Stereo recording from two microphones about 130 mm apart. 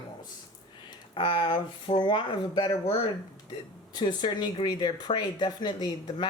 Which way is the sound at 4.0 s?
35° left (ahead or behind).